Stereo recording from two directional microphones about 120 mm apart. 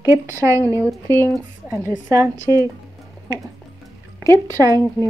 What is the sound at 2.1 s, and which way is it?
Speech, 30° right (ahead or behind).